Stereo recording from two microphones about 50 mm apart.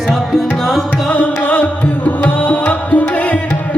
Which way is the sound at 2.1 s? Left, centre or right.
Left.